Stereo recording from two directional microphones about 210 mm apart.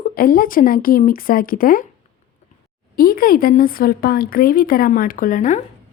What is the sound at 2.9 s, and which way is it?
Speech, 45° left (ahead or behind).